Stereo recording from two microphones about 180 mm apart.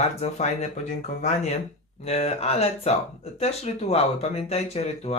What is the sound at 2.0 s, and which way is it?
Speech, 35° left (ahead or behind).